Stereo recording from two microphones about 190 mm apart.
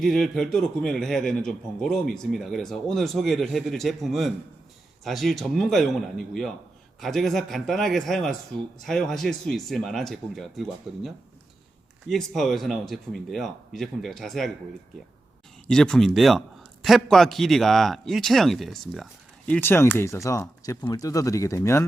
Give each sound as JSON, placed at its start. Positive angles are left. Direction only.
{"t": 0.0, "sound": "a man's voice", "side_deg": 5}
{"t": 15.6, "sound": "a man's voice", "side_deg": 5}
{"t": 19.5, "sound": "speech", "side_deg": 10}